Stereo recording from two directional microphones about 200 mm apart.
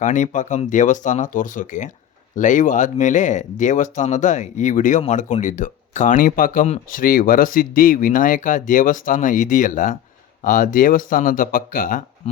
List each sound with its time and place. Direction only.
0.0 s speech: 40° left (ahead or behind)